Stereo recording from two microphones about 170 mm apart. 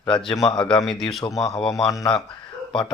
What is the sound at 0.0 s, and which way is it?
Speech, 25° left (ahead or behind).